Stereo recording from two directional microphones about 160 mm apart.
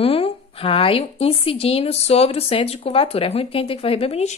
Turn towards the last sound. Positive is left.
turn(degrees=40)  # may be behind; listen again after turning